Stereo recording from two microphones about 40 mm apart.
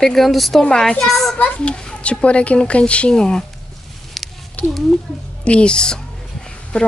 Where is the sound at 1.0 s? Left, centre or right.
Centre.